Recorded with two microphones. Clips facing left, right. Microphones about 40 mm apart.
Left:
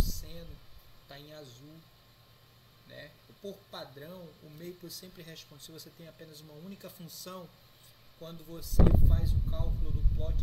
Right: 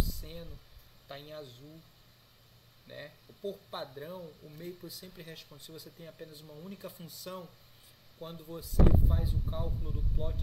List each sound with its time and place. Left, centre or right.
0.0 s a sound: centre
1.0 s a man's voice: centre
2.9 s speech: centre